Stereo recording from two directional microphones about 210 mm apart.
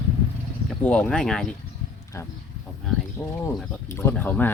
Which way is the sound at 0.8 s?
5° left (ahead or behind).